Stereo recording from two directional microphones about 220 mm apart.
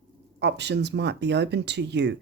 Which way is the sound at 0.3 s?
50° right (ahead or behind).